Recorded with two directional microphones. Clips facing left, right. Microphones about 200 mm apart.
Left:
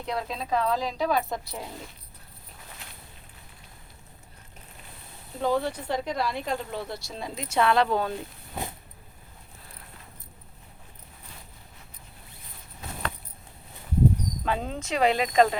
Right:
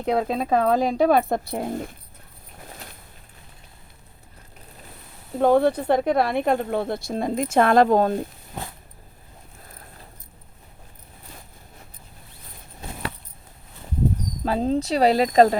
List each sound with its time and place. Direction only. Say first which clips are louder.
0.0 s speech: right 9 dB; 55° right (ahead or behind)
5.4 s speech: right 9 dB; 55° right (ahead or behind)
14.4 s speech: right 11 dB; 35° right (ahead or behind)